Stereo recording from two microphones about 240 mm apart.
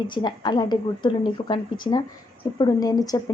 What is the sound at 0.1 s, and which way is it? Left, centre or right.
Speech, centre.